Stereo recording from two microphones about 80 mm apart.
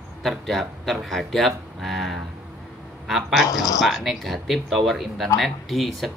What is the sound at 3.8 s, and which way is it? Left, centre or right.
Speech, centre.